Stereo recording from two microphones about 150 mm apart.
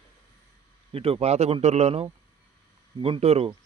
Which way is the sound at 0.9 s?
40° right (ahead or behind).